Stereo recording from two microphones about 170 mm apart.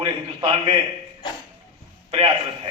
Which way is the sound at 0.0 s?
30° right (ahead or behind).